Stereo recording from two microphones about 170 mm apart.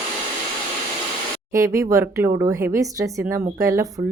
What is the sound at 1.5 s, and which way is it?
Speech, 20° right (ahead or behind).